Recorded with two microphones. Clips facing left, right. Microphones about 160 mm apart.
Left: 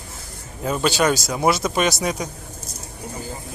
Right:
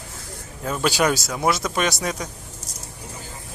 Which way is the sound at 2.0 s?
15° left (ahead or behind).